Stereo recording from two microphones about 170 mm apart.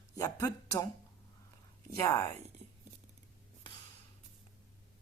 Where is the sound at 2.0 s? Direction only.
20° left (ahead or behind).